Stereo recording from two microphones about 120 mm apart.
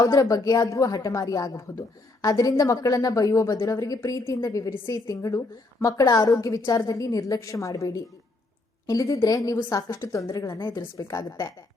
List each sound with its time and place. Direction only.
0.0 s a woman's voice: 30° left (ahead or behind)